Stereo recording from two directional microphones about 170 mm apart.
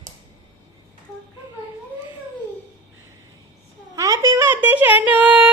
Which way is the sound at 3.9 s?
20° right (ahead or behind).